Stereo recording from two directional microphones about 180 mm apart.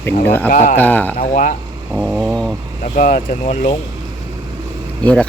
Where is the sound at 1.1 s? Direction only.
45° left (ahead or behind).